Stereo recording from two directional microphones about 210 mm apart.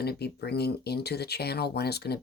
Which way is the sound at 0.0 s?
50° left (ahead or behind).